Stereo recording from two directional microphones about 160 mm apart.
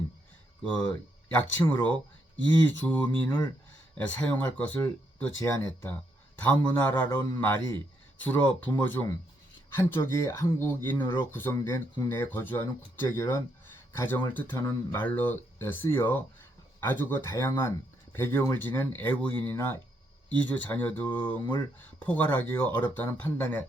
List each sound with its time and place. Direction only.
1.6 s speech: 20° left (ahead or behind)
2.3 s speech: 10° left (ahead or behind)